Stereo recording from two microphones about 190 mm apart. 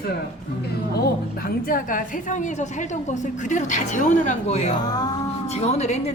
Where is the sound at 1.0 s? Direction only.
50° left (ahead or behind).